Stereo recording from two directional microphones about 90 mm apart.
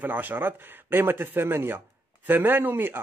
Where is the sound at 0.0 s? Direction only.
20° right (ahead or behind).